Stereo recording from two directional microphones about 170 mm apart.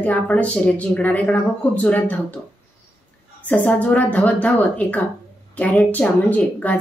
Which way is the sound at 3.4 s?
10° left (ahead or behind).